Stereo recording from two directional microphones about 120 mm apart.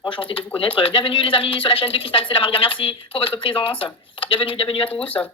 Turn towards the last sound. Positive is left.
turn(degrees=50)  # may be behind; listen again after turning